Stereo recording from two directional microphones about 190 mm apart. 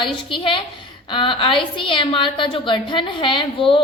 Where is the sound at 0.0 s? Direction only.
25° left (ahead or behind).